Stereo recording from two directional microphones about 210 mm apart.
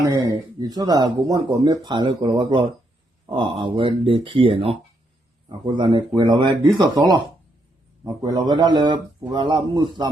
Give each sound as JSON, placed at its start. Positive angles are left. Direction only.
{"t": 0.0, "sound": "speech", "side_deg": -15}